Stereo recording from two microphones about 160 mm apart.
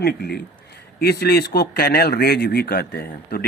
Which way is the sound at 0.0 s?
70° left (ahead or behind).